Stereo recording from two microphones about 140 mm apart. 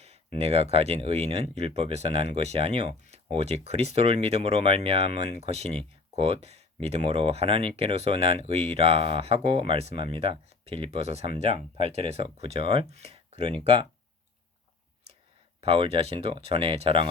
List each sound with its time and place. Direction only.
0.3 s speech: 45° right (ahead or behind)
15.6 s speech: 45° right (ahead or behind)